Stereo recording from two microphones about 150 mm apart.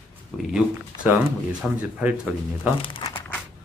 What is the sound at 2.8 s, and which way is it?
Crumpling, 35° left (ahead or behind).